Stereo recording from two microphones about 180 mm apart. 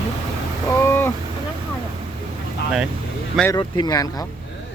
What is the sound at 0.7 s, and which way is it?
Speech, 10° left (ahead or behind).